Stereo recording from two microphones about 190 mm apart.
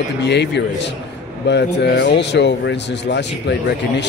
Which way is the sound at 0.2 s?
65° left (ahead or behind).